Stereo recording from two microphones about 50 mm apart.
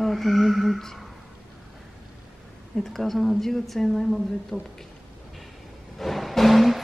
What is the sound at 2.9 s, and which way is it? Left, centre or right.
Speech, centre.